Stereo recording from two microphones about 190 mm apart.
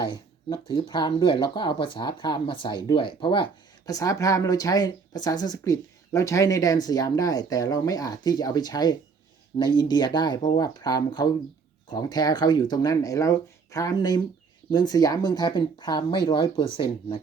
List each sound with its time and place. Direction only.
0.1 s speech: 25° left (ahead or behind)